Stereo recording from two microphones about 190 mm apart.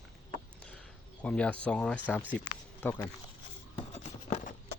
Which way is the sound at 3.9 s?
35° left (ahead or behind).